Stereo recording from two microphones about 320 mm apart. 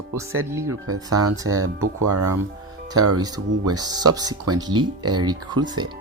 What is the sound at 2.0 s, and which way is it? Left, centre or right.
Speech, right.